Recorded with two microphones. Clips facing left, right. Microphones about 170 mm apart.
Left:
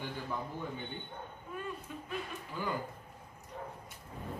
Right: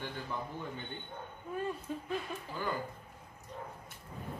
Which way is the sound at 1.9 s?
35° right (ahead or behind).